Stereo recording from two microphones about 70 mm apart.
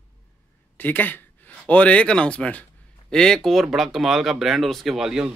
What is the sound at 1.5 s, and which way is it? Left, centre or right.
Speech, centre.